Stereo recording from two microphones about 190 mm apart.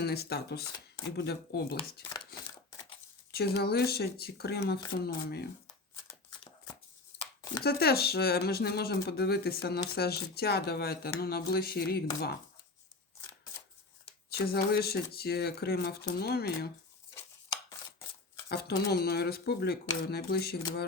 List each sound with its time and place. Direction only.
0.0 s speech: 60° left (ahead or behind)
2.3 s a sound: 55° left (ahead or behind)
3.3 s speech: 55° left (ahead or behind)
7.6 s speech: 55° left (ahead or behind)
14.3 s speech: 55° left (ahead or behind)
18.4 s speech: 55° left (ahead or behind)